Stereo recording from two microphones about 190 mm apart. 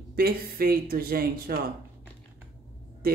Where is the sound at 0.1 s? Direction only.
55° right (ahead or behind).